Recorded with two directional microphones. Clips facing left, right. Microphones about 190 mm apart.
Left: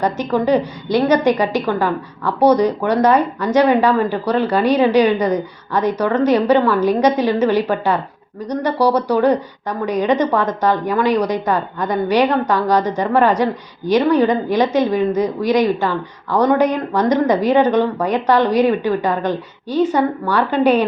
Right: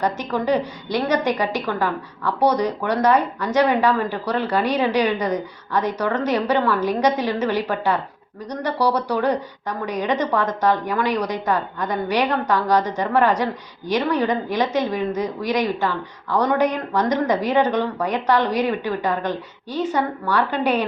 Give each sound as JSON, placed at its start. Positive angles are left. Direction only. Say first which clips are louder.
{"t": 0.0, "sound": "a woman's voice", "louder": "left 5 dB", "side_deg": 25}